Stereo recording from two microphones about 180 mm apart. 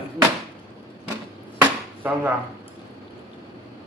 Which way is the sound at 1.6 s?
10° right (ahead or behind).